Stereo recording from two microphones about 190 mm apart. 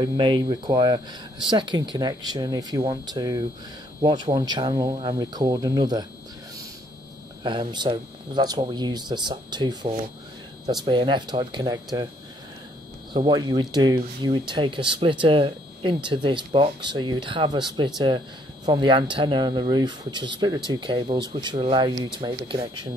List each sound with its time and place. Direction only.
0.0 s speech: 25° right (ahead or behind)
7.4 s speech: 25° right (ahead or behind)
13.1 s speech: 25° right (ahead or behind)